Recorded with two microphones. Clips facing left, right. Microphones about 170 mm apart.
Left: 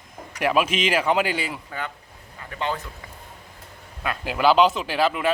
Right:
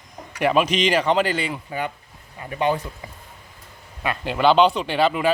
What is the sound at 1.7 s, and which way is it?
Speech, 15° right (ahead or behind).